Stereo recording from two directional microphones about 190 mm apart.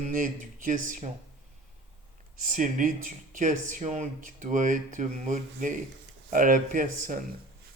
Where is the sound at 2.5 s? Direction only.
45° right (ahead or behind).